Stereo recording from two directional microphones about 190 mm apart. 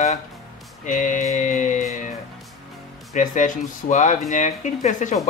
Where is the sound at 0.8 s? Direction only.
40° left (ahead or behind).